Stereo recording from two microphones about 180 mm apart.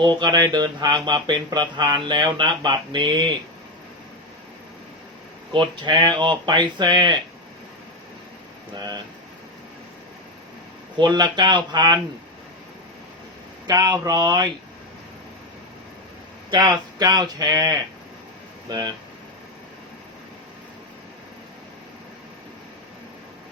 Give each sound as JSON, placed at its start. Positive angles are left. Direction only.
{"t": 0.2, "sound": "speech", "side_deg": -25}
{"t": 5.5, "sound": "speech", "side_deg": -25}
{"t": 8.7, "sound": "speech", "side_deg": -25}
{"t": 10.9, "sound": "speech", "side_deg": -25}
{"t": 13.7, "sound": "speech", "side_deg": -20}
{"t": 16.5, "sound": "speech", "side_deg": -20}